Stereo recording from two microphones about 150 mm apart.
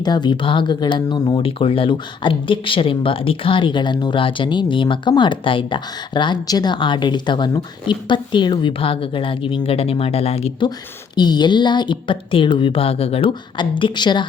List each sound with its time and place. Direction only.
0.0 s speech: 30° left (ahead or behind)
11.1 s speech: 30° left (ahead or behind)